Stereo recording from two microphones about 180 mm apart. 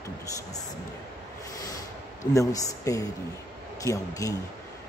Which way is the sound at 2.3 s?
20° left (ahead or behind).